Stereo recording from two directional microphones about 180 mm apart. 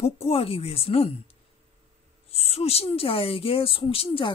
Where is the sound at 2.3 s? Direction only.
35° left (ahead or behind).